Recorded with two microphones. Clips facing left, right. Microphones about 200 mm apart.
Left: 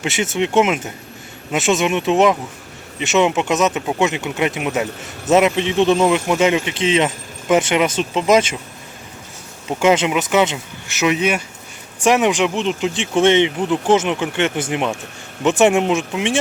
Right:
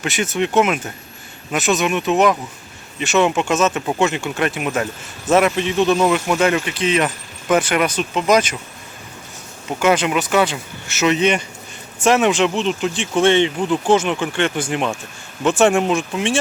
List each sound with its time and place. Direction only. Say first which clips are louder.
0.0 s speech: left 1 dB; 25° left (ahead or behind)
9.6 s speech: left 2 dB; 25° left (ahead or behind)